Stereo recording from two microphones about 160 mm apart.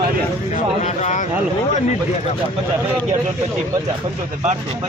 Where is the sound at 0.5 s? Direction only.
45° left (ahead or behind).